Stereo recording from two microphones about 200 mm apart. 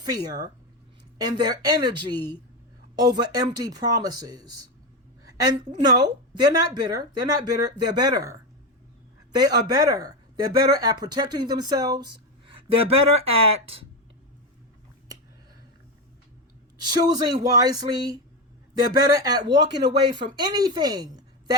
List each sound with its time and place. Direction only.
0.0 s speech: 20° right (ahead or behind)
16.7 s speech: 20° right (ahead or behind)